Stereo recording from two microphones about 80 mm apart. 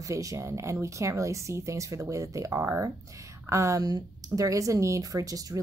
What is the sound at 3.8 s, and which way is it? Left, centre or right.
Speech, right.